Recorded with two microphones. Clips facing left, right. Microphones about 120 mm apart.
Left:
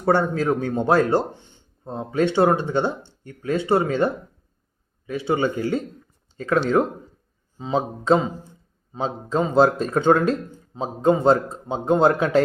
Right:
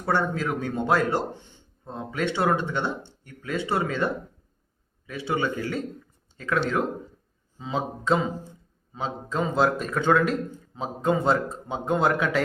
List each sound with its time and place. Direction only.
0.0 s a man's voice: 35° left (ahead or behind)